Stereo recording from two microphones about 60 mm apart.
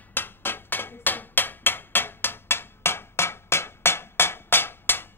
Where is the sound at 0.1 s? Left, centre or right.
Left.